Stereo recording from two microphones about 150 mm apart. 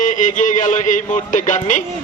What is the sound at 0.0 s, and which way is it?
A man's voice, 60° left (ahead or behind).